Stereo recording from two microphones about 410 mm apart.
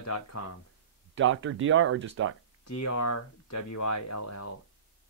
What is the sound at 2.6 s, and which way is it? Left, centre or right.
Speech, left.